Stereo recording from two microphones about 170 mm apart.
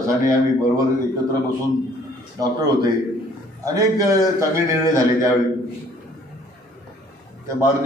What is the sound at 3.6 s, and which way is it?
A man's voice, 20° right (ahead or behind).